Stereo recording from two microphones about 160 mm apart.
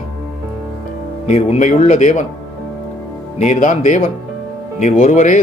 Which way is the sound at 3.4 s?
50° left (ahead or behind).